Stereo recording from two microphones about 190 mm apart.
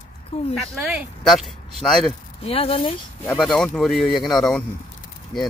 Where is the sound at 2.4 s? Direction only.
30° left (ahead or behind).